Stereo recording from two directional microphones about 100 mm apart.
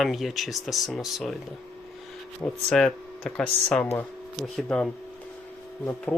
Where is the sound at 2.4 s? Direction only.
20° left (ahead or behind).